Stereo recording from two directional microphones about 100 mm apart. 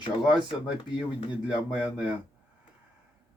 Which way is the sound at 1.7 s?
15° right (ahead or behind).